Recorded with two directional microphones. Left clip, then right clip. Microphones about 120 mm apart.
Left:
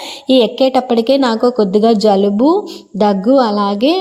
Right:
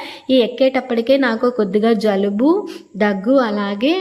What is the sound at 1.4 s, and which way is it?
Speech, 15° right (ahead or behind).